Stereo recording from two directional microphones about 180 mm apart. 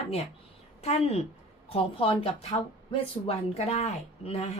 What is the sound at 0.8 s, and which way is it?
Speech, 35° left (ahead or behind).